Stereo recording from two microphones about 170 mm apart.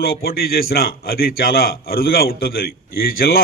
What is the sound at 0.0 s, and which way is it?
A man's voice, 60° left (ahead or behind).